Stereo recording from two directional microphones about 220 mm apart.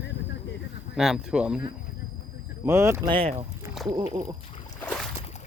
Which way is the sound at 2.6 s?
10° right (ahead or behind).